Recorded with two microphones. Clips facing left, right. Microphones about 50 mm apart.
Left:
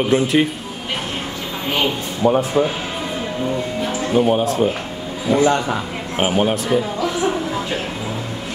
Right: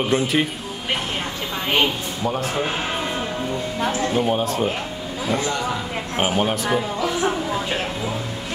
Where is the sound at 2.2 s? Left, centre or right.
Centre.